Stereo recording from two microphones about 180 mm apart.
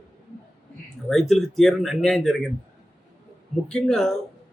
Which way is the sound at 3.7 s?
5° left (ahead or behind).